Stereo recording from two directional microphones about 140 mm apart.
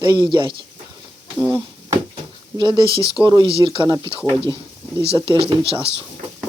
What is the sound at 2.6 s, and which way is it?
Speech, 35° right (ahead or behind).